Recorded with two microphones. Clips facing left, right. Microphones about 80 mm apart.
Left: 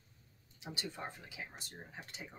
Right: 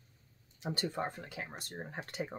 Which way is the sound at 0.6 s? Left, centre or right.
Right.